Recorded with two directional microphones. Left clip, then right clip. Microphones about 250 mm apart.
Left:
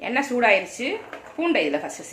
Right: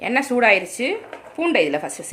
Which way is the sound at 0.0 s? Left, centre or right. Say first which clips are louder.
Right 3 dB; right.